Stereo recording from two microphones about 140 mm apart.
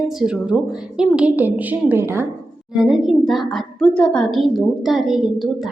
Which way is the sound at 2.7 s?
Centre (ahead or behind).